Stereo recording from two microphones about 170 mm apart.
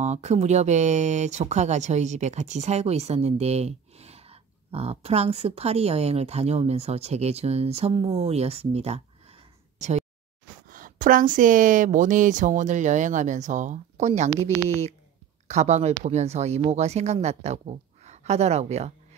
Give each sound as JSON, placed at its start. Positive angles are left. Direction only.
{"t": 0.0, "sound": "speech", "side_deg": -40}
{"t": 9.8, "sound": "a sound", "side_deg": -40}
{"t": 10.7, "sound": "a woman's voice", "side_deg": -55}